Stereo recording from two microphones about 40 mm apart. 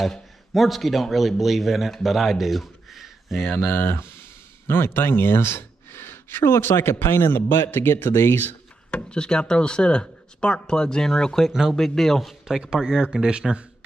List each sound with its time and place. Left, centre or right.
0.0 s a man's voice: centre
3.4 s speech: left
7.5 s speech: left
8.9 s a man's voice: left; by 12.4 s centre
12.4 s speech: centre